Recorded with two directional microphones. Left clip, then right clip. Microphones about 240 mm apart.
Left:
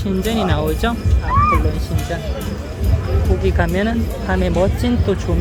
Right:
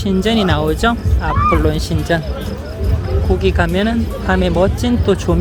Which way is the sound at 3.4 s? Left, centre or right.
Centre.